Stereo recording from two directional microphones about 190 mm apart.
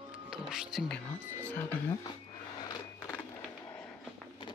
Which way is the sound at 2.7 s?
15° left (ahead or behind).